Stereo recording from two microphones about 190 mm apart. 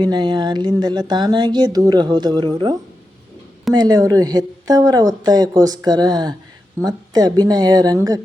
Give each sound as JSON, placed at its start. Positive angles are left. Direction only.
{"t": 0.0, "sound": "a woman's voice", "side_deg": -20}
{"t": 3.8, "sound": "a woman's voice", "side_deg": -20}